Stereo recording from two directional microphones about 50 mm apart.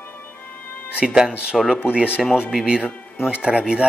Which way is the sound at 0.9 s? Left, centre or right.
Centre.